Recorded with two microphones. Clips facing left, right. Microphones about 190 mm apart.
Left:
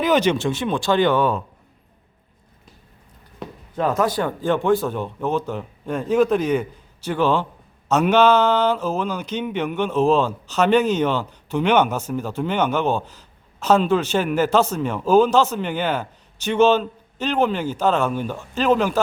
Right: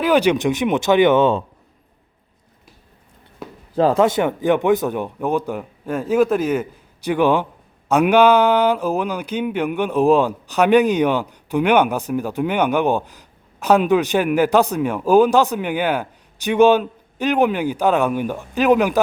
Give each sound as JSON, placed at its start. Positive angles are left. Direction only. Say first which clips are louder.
{"t": 0.0, "sound": "speech", "louder": "right 2 dB", "side_deg": -10}
{"t": 3.4, "sound": "a sound", "louder": "even", "side_deg": -5}
{"t": 3.8, "sound": "speech", "louder": "right 5 dB", "side_deg": -30}